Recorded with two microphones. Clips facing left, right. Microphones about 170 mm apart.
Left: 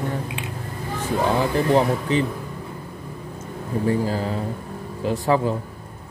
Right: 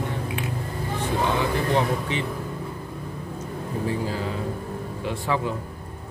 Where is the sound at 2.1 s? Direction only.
40° left (ahead or behind).